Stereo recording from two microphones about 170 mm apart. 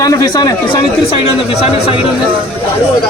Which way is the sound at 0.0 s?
20° left (ahead or behind).